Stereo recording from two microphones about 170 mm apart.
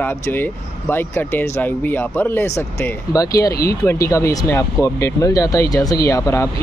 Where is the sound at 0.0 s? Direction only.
10° left (ahead or behind).